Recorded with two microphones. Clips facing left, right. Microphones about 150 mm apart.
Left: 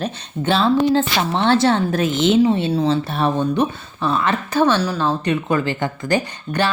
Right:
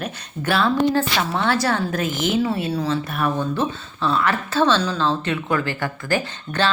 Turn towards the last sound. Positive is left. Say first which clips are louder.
# left 2 dB
turn(degrees=15)  # may be behind; listen again after turning